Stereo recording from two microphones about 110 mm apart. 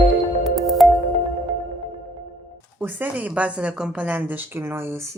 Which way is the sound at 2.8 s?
15° right (ahead or behind).